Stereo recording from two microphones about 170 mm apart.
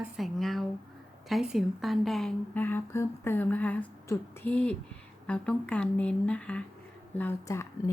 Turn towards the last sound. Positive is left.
turn(degrees=15)  # may be behind; listen again after turning